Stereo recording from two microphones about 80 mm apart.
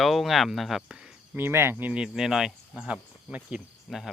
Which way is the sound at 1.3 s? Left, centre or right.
Right.